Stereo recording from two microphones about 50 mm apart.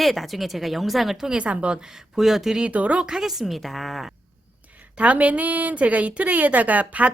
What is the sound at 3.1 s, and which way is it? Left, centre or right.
Speech, centre.